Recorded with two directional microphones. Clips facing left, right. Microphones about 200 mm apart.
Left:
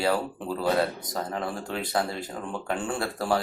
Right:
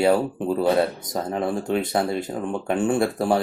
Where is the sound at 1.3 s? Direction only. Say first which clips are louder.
Right 11 dB; 25° right (ahead or behind).